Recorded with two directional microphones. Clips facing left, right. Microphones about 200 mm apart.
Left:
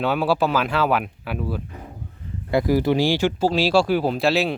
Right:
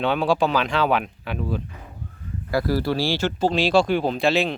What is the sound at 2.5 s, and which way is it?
Speech, 20° left (ahead or behind).